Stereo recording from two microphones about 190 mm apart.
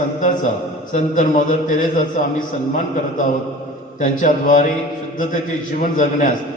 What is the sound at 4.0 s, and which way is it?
Speech, 45° left (ahead or behind).